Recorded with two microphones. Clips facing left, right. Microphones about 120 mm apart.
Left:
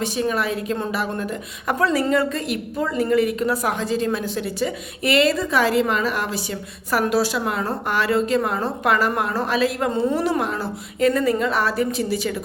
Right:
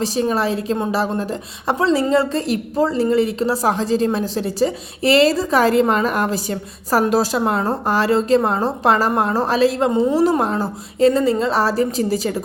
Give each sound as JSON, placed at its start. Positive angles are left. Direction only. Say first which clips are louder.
{"t": 0.0, "sound": "a woman's voice", "louder": "right 4 dB", "side_deg": -35}